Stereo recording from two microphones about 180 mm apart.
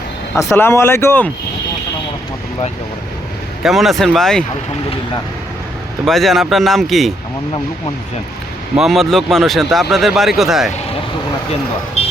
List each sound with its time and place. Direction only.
0.3 s speech: 15° left (ahead or behind)
3.6 s speech: centre (ahead or behind)
6.1 s speech: centre (ahead or behind)
8.7 s speech: centre (ahead or behind)
12.0 s vehicle: 35° left (ahead or behind)